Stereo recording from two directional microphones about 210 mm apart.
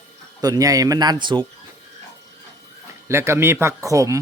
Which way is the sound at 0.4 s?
15° right (ahead or behind).